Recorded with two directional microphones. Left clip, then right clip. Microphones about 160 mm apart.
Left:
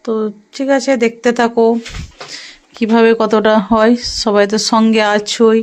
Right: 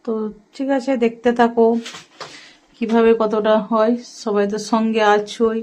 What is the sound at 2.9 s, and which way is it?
Speech, 15° left (ahead or behind).